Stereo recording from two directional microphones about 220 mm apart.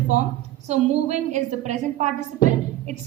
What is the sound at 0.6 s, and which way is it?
A woman's voice, 30° right (ahead or behind).